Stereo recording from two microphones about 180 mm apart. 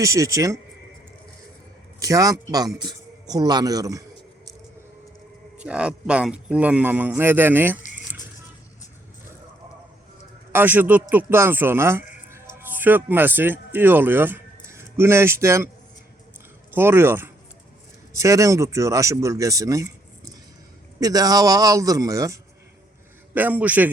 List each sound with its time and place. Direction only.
0.0 s a man's voice: 20° right (ahead or behind)
2.0 s a man's voice: 20° right (ahead or behind)
5.5 s a man's voice: 5° right (ahead or behind)
10.5 s a man's voice: 10° right (ahead or behind)
16.7 s a man's voice: 10° right (ahead or behind)